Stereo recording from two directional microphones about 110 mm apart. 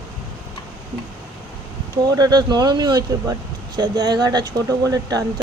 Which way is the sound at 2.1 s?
35° right (ahead or behind).